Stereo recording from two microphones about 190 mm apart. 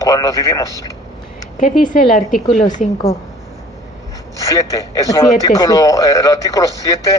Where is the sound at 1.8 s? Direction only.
45° left (ahead or behind).